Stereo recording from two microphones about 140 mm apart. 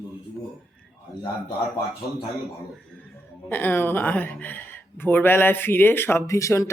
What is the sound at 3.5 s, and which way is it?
Speech, 15° left (ahead or behind).